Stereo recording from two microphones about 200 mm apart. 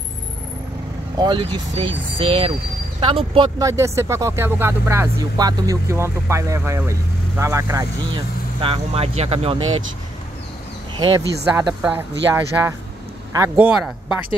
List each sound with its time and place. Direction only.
1.1 s speech: 20° right (ahead or behind)
11.0 s speech: 20° right (ahead or behind)
11.5 s speech: 10° right (ahead or behind)